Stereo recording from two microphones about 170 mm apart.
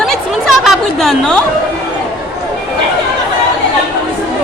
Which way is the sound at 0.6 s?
Centre (ahead or behind).